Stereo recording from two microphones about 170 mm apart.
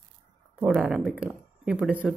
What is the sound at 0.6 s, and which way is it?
Speech, 5° right (ahead or behind).